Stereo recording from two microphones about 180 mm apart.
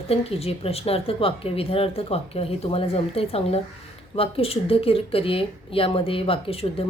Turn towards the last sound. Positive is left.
turn(degrees=30)  # may be behind; listen again after turning